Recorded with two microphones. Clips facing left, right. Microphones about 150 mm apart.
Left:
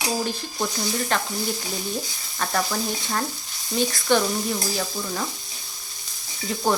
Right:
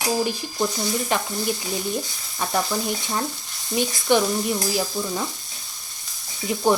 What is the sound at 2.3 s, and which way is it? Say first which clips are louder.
Speech: right 1 dB; 10° right (ahead or behind).